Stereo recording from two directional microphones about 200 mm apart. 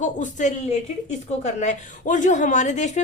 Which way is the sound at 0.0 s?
40° left (ahead or behind).